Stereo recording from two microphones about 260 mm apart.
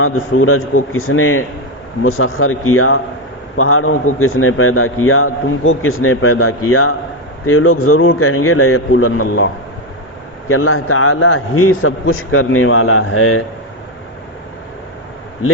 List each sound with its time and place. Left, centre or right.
0.0 s a man's voice: left
10.5 s a man's voice: left